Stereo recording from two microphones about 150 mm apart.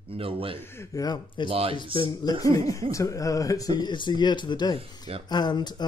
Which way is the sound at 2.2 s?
25° left (ahead or behind).